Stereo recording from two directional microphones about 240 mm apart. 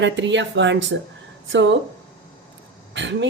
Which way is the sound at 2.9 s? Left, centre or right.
Right.